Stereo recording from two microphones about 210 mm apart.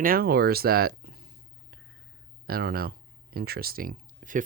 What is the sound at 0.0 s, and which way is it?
Speech, 45° right (ahead or behind).